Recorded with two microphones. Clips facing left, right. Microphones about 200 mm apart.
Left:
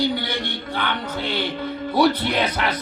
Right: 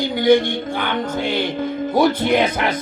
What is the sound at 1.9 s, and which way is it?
Speech, 45° right (ahead or behind).